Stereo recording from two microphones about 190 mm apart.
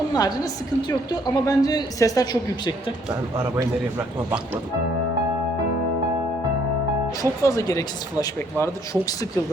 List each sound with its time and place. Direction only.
0.1 s a woman's voice: 20° left (ahead or behind)
3.3 s a man's voice: 15° right (ahead or behind)
7.2 s speech: 15° left (ahead or behind)